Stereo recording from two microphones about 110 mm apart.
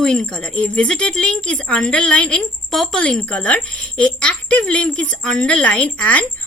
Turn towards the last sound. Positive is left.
turn(degrees=10)  # may be behind; listen again after turning